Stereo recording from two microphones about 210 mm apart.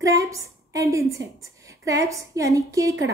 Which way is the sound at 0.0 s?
15° right (ahead or behind).